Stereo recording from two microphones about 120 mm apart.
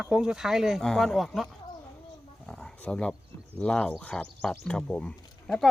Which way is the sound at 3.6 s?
10° left (ahead or behind).